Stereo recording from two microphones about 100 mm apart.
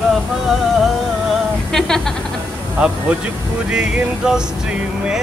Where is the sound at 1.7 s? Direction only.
5° left (ahead or behind).